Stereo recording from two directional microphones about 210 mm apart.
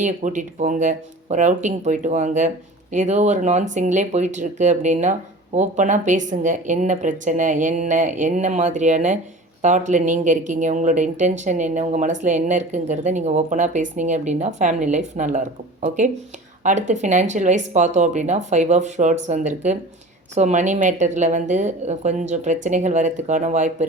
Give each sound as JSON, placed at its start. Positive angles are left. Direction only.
{"t": 0.0, "sound": "speech", "side_deg": -35}
{"t": 16.6, "sound": "speech", "side_deg": -35}